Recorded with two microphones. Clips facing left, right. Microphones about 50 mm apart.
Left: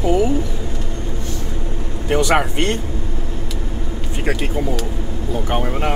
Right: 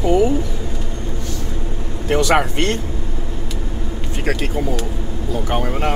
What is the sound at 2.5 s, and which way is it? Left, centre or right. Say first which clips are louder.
Speech: even; centre.